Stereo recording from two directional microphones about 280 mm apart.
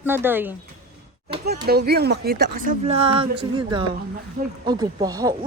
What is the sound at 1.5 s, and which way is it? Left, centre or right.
Speech, right.